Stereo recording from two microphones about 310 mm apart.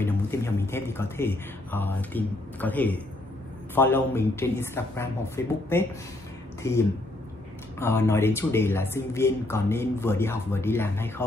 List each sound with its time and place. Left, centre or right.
0.0 s speech: centre
7.8 s speech: centre